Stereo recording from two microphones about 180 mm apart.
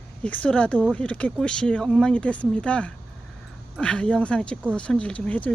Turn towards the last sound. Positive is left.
turn(degrees=10)  # may be behind; listen again after turning